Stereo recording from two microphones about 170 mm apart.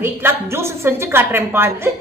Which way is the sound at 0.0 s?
15° right (ahead or behind).